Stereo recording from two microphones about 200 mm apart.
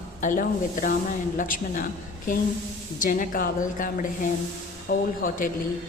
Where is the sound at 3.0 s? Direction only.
45° left (ahead or behind).